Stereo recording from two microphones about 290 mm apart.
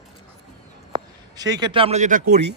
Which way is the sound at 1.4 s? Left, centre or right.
Centre.